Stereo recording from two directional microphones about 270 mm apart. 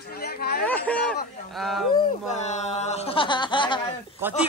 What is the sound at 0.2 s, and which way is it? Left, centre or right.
Speech, left.